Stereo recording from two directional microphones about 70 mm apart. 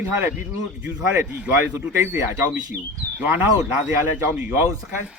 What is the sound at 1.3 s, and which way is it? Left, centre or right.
Speech, right.